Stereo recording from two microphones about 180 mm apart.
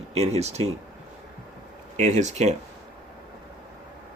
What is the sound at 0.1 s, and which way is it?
Speech, 35° right (ahead or behind).